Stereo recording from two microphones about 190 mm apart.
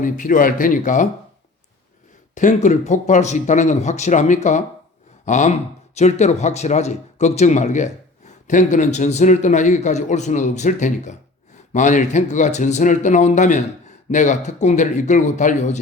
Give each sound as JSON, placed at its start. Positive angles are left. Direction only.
{"t": 0.0, "sound": "speech", "side_deg": 45}
{"t": 2.3, "sound": "a man's voice", "side_deg": 40}